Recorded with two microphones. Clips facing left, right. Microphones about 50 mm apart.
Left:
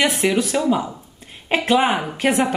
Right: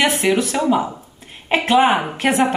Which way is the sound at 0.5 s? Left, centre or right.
Centre.